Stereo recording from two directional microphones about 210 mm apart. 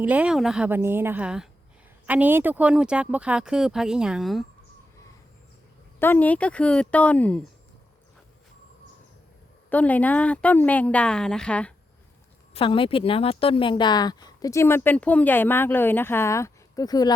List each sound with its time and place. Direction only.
0.0 s a woman's voice: 5° right (ahead or behind)
6.0 s speech: 10° left (ahead or behind)
9.6 s speech: 5° left (ahead or behind)
12.5 s speech: 25° left (ahead or behind)